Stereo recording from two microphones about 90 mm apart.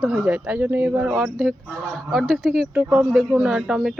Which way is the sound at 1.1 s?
5° right (ahead or behind).